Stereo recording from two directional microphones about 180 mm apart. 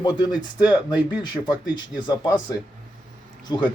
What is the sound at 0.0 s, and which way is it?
Speech, 25° left (ahead or behind).